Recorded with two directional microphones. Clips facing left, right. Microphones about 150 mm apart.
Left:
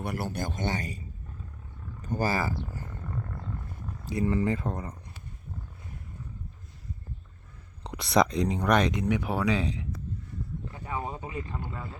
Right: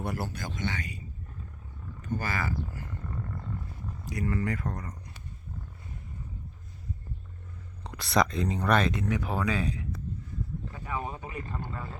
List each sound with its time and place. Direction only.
0.3 s speech: 50° left (ahead or behind)
2.0 s speech: 35° left (ahead or behind)
4.0 s speech: 25° left (ahead or behind)
7.9 s speech: 20° left (ahead or behind)
10.7 s a sound: 25° left (ahead or behind)